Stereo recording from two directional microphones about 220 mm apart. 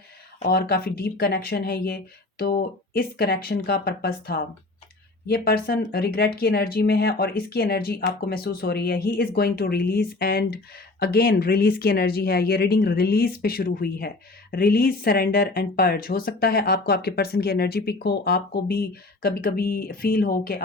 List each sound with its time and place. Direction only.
0.4 s speech: 45° left (ahead or behind)